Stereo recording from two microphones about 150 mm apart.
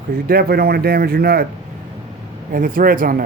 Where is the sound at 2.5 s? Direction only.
70° right (ahead or behind).